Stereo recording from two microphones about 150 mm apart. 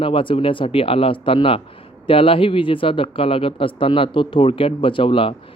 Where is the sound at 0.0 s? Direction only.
35° left (ahead or behind).